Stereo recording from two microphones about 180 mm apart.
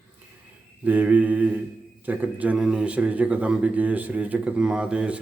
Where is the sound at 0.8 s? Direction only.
10° right (ahead or behind).